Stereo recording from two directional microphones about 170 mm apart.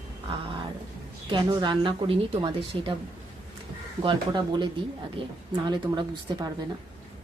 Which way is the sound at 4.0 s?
30° right (ahead or behind).